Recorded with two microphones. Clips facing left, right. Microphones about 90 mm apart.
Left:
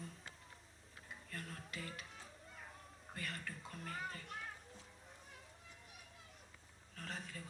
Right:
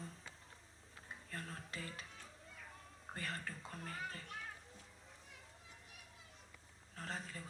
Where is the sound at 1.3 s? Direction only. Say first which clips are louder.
Right 1 dB; 30° right (ahead or behind).